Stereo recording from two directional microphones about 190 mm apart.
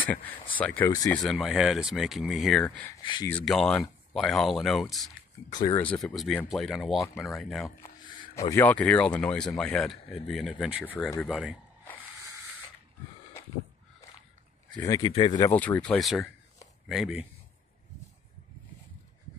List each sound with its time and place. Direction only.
0.0 s speech: 10° left (ahead or behind)
3.0 s speech: 25° left (ahead or behind)
3.3 s speech: 5° left (ahead or behind)
5.5 s speech: 20° left (ahead or behind)
6.0 s speech: 5° left (ahead or behind)
7.8 s speech: 25° left (ahead or behind); by 11.5 s centre (ahead or behind)
13.4 s a sound: 15° left (ahead or behind)
14.8 s speech: 20° left (ahead or behind)
15.5 s speech: 10° left (ahead or behind)